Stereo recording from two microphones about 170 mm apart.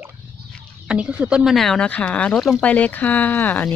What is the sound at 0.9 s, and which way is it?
Speech, 5° right (ahead or behind).